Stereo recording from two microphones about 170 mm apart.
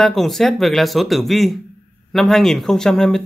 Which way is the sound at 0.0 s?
Centre (ahead or behind).